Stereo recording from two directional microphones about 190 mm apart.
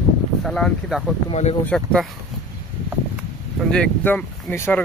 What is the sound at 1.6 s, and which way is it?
Speech, 5° left (ahead or behind).